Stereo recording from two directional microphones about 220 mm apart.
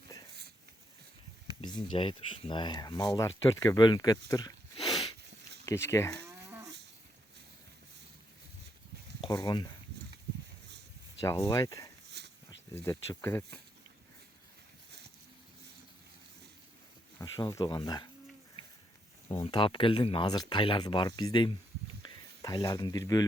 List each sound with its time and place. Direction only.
1.6 s speech: 20° left (ahead or behind)
4.3 s sniff: 15° left (ahead or behind)
5.6 s speech: 10° left (ahead or behind)
6.2 s livestock: 15° right (ahead or behind)
9.2 s speech: 20° left (ahead or behind)
11.2 s speech: 15° left (ahead or behind)
12.2 s a sound: 50° right (ahead or behind)
12.7 s speech: 10° left (ahead or behind)
17.2 s speech: 15° left (ahead or behind)
19.4 s speech: 25° left (ahead or behind)